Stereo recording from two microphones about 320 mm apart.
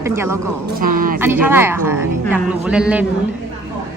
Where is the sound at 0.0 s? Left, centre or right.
Centre.